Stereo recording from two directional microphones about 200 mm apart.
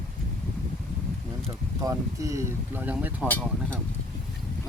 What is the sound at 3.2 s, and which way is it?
Speech, 10° left (ahead or behind).